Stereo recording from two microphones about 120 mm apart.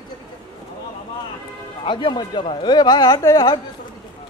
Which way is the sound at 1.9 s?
40° left (ahead or behind).